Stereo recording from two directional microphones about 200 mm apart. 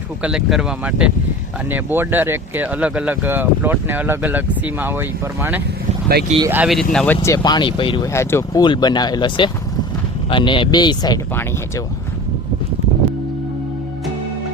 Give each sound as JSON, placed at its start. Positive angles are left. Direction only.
{"t": 0.2, "sound": "speech", "side_deg": -5}
{"t": 7.3, "sound": "speech", "side_deg": 20}